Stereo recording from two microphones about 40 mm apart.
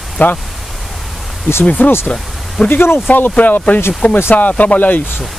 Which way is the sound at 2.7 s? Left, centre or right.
Left.